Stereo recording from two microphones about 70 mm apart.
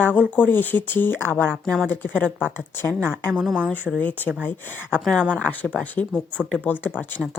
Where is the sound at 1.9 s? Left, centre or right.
Left.